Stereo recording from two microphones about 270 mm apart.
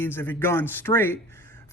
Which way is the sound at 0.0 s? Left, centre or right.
Centre.